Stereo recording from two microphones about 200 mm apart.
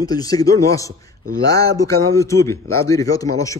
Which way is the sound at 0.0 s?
20° left (ahead or behind).